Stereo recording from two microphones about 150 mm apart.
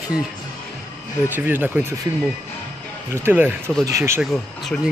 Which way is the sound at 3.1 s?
15° right (ahead or behind).